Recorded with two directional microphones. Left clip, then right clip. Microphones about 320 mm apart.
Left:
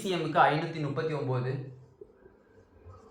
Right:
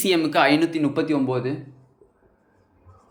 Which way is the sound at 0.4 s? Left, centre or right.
Right.